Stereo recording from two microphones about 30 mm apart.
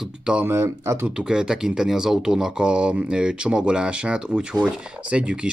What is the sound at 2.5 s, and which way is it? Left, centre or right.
Speech, right.